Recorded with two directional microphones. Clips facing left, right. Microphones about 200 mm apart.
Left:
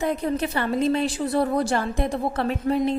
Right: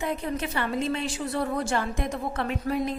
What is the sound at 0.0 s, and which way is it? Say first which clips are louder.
A woman's voice: left 5 dB; 40° left (ahead or behind).